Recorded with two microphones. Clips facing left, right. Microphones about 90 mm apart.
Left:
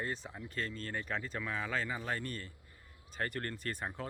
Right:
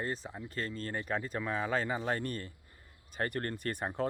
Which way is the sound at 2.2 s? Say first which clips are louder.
Right 4 dB; 45° right (ahead or behind).